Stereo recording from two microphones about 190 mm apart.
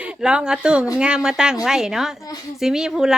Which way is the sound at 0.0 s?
5° right (ahead or behind).